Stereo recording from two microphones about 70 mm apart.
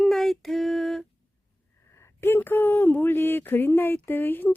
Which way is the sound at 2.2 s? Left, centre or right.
Left.